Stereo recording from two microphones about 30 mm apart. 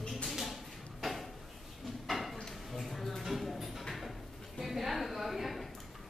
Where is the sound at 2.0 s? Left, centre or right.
Centre.